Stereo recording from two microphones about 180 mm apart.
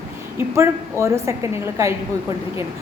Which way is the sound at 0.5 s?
15° right (ahead or behind).